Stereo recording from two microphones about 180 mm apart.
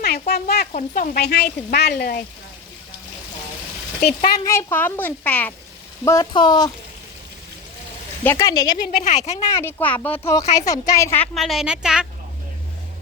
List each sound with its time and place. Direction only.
0.0 s a sound: 60° left (ahead or behind)
0.7 s speech: 45° left (ahead or behind)
4.4 s a woman's voice: 15° left (ahead or behind)
6.1 s speech: 20° left (ahead or behind)
8.2 s a woman's voice: 15° left (ahead or behind)
8.9 s speech: 50° left (ahead or behind)
9.6 s a woman's voice: 10° left (ahead or behind)
11.3 s a woman's voice: centre (ahead or behind)